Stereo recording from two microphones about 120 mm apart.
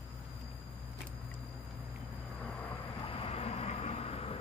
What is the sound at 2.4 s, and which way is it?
Vehicle, 5° left (ahead or behind).